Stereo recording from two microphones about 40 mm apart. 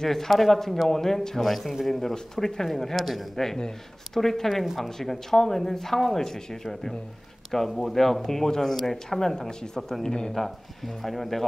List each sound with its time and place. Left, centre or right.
0.0 s speech: centre
3.5 s speech: centre
4.2 s speech: centre